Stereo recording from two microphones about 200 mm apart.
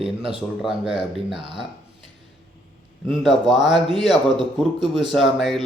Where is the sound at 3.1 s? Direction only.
Centre (ahead or behind).